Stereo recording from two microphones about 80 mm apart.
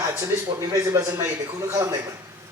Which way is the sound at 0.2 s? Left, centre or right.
Right.